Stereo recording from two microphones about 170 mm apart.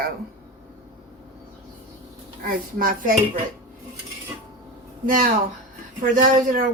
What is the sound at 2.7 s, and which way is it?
Speech, 55° right (ahead or behind).